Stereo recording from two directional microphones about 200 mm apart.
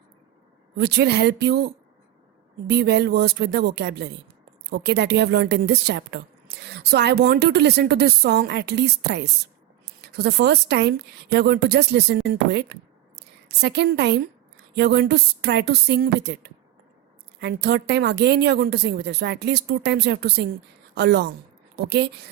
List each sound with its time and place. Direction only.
0.8 s a woman's voice: 55° right (ahead or behind)